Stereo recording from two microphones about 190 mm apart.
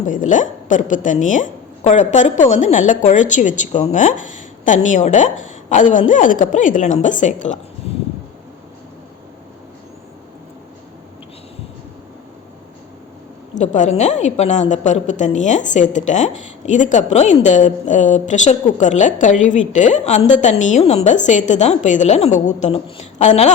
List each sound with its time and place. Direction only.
0.0 s a woman's voice: 40° left (ahead or behind)
13.6 s a woman's voice: 40° left (ahead or behind)